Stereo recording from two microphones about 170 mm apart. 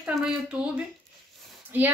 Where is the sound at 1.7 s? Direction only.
10° right (ahead or behind).